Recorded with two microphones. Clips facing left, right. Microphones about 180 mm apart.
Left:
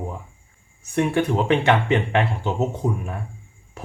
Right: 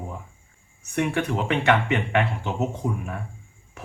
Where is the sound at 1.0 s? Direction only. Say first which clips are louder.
Left 4 dB; 30° left (ahead or behind).